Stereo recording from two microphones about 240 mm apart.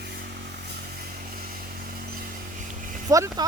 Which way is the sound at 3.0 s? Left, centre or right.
Centre.